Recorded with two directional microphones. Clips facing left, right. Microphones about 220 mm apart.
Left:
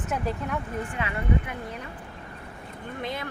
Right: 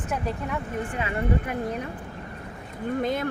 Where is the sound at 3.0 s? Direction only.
50° right (ahead or behind).